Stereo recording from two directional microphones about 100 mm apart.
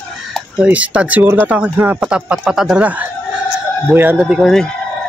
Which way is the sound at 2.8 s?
15° right (ahead or behind).